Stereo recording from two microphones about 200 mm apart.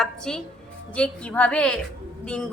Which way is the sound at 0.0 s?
5° left (ahead or behind).